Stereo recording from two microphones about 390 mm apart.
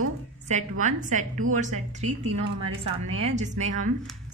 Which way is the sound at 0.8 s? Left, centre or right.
Centre.